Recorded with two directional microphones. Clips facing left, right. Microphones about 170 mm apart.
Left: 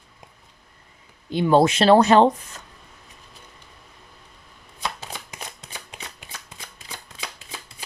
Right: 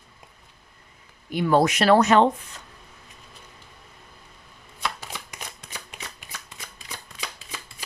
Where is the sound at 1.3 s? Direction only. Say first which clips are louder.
Left 3 dB; 25° left (ahead or behind).